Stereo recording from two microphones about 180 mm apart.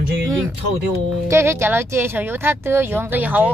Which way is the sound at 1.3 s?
15° right (ahead or behind).